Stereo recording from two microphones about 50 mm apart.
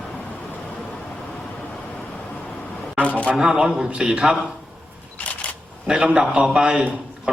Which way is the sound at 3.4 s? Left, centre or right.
Centre.